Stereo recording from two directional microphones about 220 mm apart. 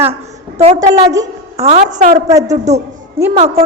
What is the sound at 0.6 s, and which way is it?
Speech, 30° right (ahead or behind).